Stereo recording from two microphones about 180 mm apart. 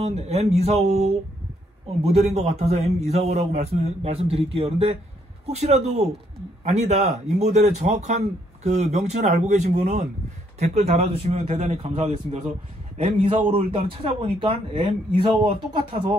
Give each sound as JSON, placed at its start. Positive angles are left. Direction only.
{"t": 0.0, "sound": "a man's voice", "side_deg": -35}